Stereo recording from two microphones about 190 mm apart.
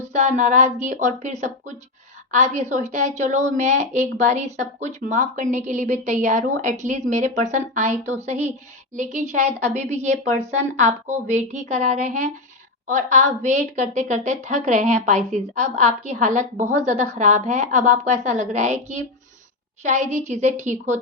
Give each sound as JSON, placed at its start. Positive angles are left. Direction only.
{"t": 0.1, "sound": "a woman's voice", "side_deg": -40}